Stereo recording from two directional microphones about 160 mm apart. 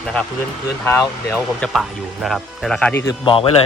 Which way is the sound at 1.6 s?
Centre (ahead or behind).